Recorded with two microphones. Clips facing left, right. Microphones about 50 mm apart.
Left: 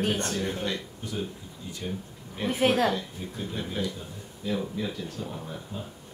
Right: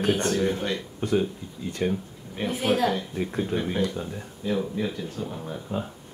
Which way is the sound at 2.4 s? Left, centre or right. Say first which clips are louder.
Left 2 dB; left.